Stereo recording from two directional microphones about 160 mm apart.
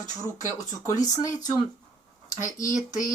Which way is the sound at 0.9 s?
25° left (ahead or behind).